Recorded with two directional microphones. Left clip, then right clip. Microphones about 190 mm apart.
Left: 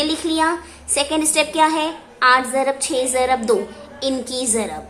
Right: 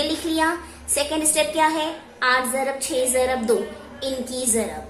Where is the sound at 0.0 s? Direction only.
25° left (ahead or behind).